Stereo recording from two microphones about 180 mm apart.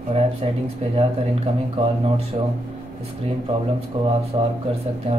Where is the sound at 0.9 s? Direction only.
35° right (ahead or behind).